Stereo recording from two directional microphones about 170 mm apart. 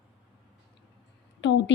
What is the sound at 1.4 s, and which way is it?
Speech, 90° left.